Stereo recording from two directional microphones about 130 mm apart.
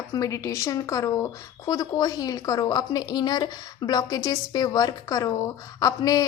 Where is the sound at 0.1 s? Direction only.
25° left (ahead or behind).